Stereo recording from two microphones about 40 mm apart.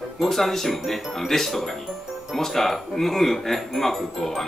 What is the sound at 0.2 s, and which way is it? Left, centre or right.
Speech, centre.